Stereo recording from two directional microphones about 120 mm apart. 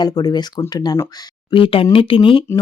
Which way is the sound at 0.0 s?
30° left (ahead or behind).